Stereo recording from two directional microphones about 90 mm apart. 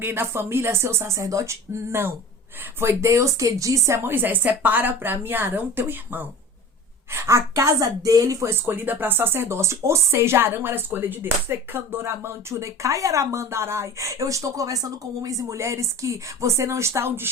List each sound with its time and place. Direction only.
0.0 s a woman's voice: 25° right (ahead or behind)